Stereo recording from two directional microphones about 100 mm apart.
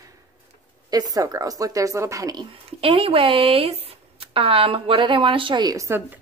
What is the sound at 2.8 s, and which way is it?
Speech, 70° right (ahead or behind).